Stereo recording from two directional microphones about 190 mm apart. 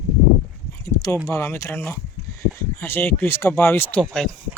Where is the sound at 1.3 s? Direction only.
15° left (ahead or behind).